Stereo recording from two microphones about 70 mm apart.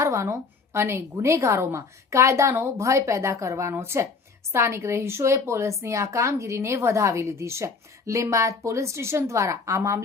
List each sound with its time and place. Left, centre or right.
0.0 s a woman's voice: right